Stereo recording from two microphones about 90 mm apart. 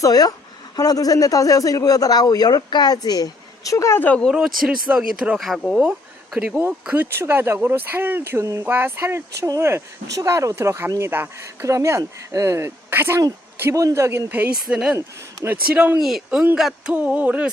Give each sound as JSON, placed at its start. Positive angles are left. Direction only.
{"t": 0.0, "sound": "a man's voice", "side_deg": 45}
{"t": 4.0, "sound": "speech", "side_deg": 15}
{"t": 4.4, "sound": "speech", "side_deg": -5}
{"t": 4.9, "sound": "a sound", "side_deg": -10}
{"t": 5.4, "sound": "speech", "side_deg": 0}
{"t": 6.7, "sound": "speech", "side_deg": -15}
{"t": 16.0, "sound": "speech", "side_deg": -5}
{"t": 16.9, "sound": "a sound", "side_deg": -15}